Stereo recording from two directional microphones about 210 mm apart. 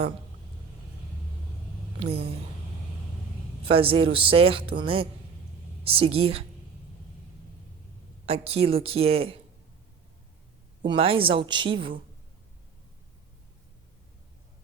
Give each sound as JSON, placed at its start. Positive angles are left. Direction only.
{"t": 2.0, "sound": "speech", "side_deg": -30}
{"t": 3.6, "sound": "speech", "side_deg": -25}
{"t": 8.3, "sound": "speech", "side_deg": -30}
{"t": 10.8, "sound": "speech", "side_deg": -25}